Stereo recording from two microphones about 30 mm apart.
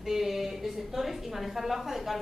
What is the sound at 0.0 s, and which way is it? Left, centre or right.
A woman's voice, centre.